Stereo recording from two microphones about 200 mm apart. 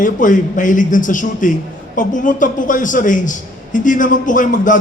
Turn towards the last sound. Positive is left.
turn(degrees=40)  # may be behind; listen again after turning